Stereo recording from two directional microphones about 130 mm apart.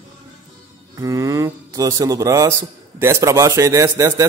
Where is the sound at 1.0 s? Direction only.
25° right (ahead or behind).